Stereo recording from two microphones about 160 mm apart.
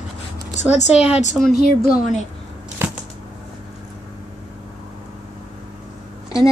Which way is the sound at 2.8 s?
10° right (ahead or behind).